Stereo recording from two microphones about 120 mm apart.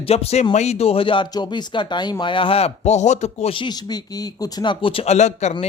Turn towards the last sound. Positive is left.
turn(degrees=70)  # may be behind; listen again after turning